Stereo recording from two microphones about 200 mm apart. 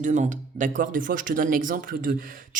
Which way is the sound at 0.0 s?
40° right (ahead or behind).